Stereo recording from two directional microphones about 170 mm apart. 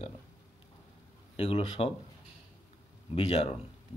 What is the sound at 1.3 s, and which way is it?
Speech, 35° left (ahead or behind).